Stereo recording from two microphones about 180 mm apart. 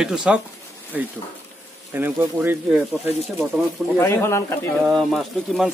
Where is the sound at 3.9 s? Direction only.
15° left (ahead or behind).